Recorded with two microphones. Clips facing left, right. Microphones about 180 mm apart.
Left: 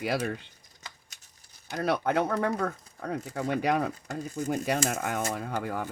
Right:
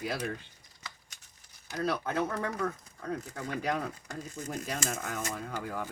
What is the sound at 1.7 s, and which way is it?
Speech, 65° left (ahead or behind).